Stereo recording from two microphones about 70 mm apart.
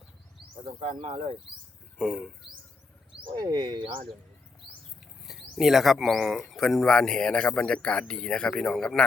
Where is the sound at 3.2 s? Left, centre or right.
Right.